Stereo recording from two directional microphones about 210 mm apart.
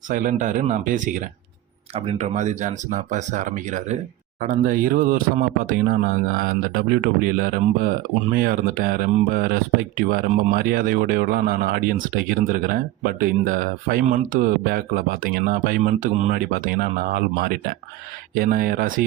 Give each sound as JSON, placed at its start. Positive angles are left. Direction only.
{"t": 0.1, "sound": "speech", "side_deg": -40}